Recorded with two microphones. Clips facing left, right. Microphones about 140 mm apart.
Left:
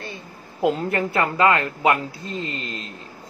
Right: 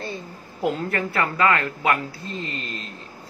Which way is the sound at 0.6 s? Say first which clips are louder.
Left 3 dB; 20° left (ahead or behind).